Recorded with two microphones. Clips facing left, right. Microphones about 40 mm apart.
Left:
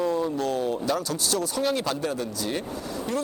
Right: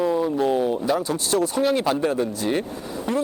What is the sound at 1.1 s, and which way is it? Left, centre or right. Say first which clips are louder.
Speech: right 5 dB; right.